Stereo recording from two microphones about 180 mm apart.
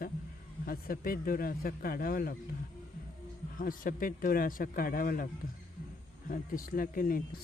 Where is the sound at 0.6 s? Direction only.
55° left (ahead or behind).